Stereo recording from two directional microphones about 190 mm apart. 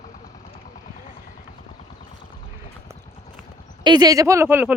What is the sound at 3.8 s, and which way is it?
Speech, 20° right (ahead or behind).